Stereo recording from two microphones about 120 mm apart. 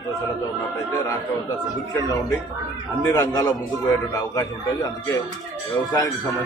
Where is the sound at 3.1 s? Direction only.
30° left (ahead or behind).